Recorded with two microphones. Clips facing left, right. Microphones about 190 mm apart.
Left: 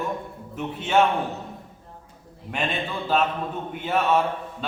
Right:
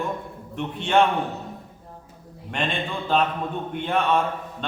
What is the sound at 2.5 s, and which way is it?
A man's voice, 5° left (ahead or behind).